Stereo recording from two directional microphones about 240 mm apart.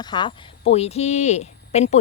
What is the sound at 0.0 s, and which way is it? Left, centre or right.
Speech, centre.